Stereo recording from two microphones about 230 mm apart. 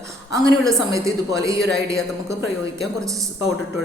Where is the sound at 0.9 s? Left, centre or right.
Centre.